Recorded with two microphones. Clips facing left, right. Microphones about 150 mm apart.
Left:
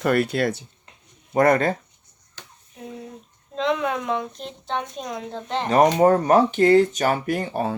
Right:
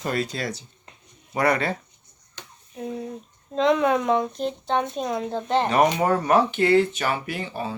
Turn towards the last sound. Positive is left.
turn(degrees=50)  # may be behind; listen again after turning